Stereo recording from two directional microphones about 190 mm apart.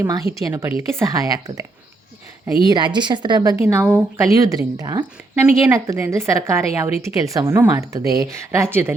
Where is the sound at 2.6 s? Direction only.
25° right (ahead or behind).